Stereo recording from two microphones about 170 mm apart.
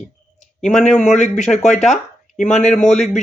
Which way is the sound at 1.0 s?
45° left (ahead or behind).